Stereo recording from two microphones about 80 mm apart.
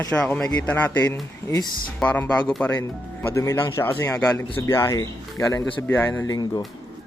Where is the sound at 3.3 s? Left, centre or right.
Left.